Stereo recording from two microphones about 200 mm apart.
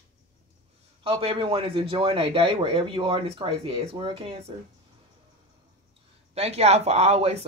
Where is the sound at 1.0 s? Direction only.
25° right (ahead or behind).